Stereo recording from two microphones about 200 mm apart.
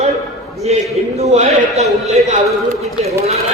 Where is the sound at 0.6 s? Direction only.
30° right (ahead or behind).